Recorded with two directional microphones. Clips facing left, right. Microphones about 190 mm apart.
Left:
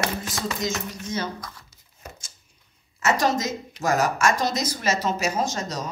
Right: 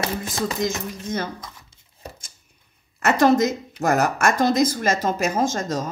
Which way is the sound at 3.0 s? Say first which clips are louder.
Right 6 dB; 60° right (ahead or behind).